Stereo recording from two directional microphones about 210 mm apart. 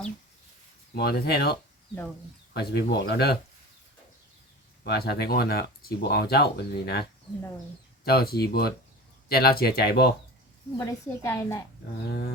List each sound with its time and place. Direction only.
0.9 s speech: 50° left (ahead or behind)
4.8 s speech: 50° left (ahead or behind)
8.0 s speech: 45° left (ahead or behind)
10.8 s a woman's voice: 15° left (ahead or behind)